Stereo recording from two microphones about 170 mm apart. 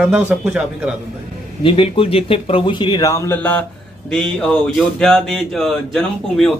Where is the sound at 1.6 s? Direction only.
30° left (ahead or behind); by 6.5 s centre (ahead or behind).